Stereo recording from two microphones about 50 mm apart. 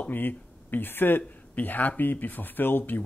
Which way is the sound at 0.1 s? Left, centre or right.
Left.